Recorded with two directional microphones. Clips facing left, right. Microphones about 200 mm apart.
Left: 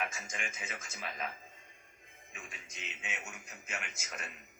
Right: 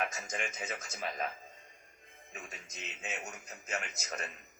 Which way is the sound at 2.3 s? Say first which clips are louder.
Right 3 dB; 40° right (ahead or behind).